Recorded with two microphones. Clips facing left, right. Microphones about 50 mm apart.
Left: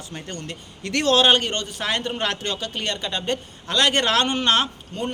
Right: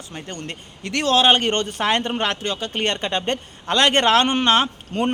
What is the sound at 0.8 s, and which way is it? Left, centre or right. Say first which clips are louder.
Speech: even; centre.